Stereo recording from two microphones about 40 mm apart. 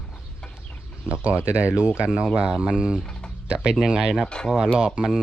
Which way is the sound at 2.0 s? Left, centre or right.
Right.